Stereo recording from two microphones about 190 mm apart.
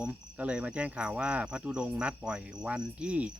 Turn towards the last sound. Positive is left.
turn(degrees=-5)  # may be behind; listen again after turning